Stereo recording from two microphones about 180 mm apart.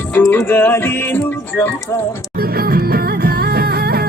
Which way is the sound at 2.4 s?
60° right (ahead or behind).